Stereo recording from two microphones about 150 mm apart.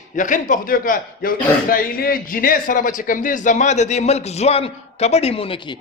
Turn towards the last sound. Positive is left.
turn(degrees=35)  # may be behind; listen again after turning